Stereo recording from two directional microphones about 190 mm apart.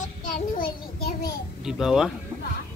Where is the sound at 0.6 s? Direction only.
55° left (ahead or behind).